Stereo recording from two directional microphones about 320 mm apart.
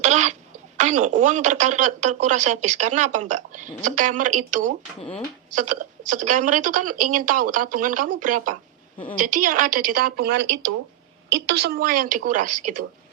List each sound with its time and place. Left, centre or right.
0.0 s cough: right
0.8 s speech: right